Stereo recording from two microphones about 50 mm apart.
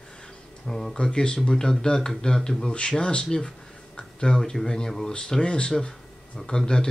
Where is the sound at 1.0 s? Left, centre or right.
Centre.